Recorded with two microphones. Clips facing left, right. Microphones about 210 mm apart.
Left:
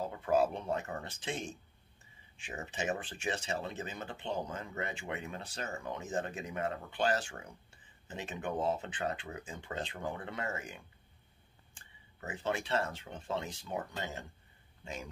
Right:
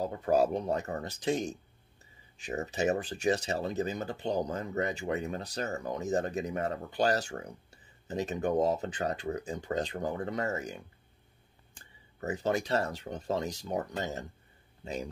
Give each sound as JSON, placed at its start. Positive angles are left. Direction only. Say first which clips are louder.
{"t": 0.0, "sound": "speech", "louder": "right 3 dB", "side_deg": -40}